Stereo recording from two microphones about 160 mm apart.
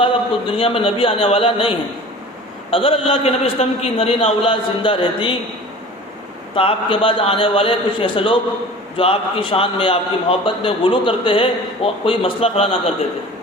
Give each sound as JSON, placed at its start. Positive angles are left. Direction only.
{"t": 0.0, "sound": "a man's voice", "side_deg": 35}
{"t": 6.6, "sound": "a man's voice", "side_deg": 35}